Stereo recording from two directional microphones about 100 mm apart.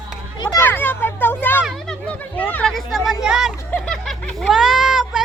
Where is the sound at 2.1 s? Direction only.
15° left (ahead or behind).